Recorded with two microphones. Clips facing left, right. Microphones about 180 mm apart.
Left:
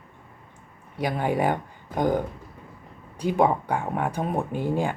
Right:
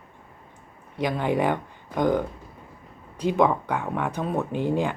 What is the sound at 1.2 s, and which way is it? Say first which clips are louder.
Speech: even; 45° left (ahead or behind).